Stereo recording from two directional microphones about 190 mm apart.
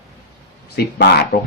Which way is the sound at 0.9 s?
60° left (ahead or behind).